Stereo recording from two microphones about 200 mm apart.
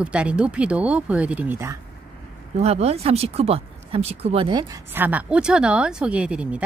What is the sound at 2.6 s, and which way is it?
Speech, 30° right (ahead or behind).